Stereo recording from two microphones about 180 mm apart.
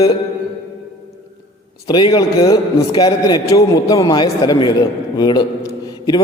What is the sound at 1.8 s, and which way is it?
A man's voice, 25° left (ahead or behind).